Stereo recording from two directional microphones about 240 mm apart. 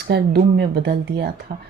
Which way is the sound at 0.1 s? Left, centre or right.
Right.